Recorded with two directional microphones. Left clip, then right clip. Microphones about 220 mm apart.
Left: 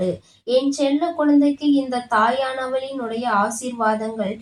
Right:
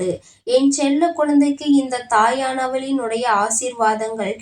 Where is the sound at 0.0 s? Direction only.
35° right (ahead or behind).